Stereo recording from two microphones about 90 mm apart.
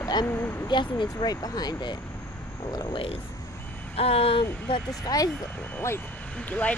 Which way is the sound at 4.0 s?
90° left.